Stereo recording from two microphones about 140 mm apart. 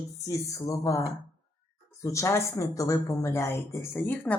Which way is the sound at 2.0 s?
20° left (ahead or behind).